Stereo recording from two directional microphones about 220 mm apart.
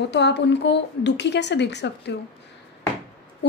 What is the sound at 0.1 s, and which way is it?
A woman's voice, 50° left (ahead or behind).